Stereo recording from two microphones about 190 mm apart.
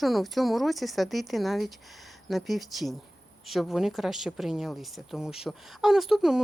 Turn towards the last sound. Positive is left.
turn(degrees=-5)  # may be behind; listen again after turning